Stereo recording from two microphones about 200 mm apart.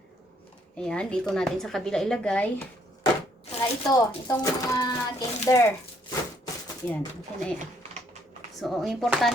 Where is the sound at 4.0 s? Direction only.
15° left (ahead or behind).